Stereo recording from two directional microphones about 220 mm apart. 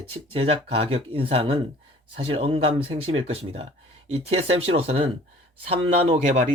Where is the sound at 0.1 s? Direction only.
25° right (ahead or behind).